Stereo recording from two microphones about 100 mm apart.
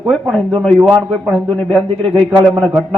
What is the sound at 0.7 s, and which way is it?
Speech, 10° right (ahead or behind).